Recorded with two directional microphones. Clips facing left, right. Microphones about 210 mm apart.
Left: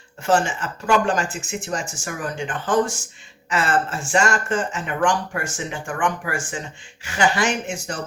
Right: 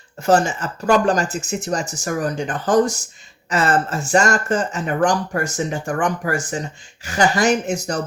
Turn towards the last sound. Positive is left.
turn(degrees=-40)  # may be behind; listen again after turning